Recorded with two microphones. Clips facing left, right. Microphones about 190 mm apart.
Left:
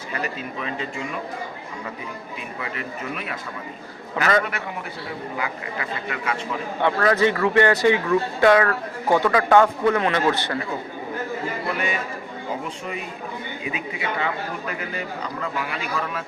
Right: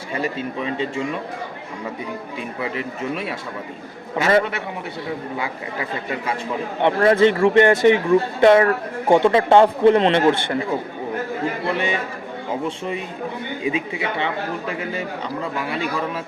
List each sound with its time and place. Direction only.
0.1 s speech: 25° right (ahead or behind)
2.7 s speech: 30° right (ahead or behind)
6.8 s speech: 25° right (ahead or behind)
13.7 s speech: 25° right (ahead or behind)